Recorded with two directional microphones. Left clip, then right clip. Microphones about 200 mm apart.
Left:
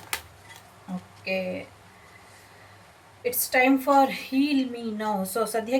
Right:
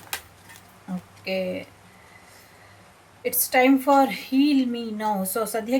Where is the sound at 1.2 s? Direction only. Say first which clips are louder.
Right 2 dB; 10° right (ahead or behind).